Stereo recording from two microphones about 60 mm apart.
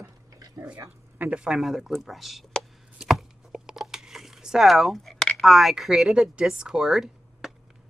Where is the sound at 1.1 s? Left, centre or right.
Right.